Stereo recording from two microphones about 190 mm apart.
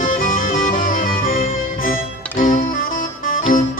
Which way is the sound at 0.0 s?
45° left (ahead or behind).